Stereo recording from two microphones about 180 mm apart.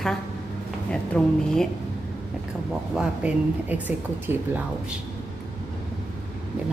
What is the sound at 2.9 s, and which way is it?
Speech, 5° right (ahead or behind).